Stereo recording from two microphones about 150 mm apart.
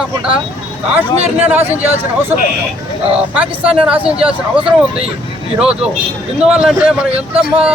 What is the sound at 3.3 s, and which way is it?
Speech, 10° right (ahead or behind).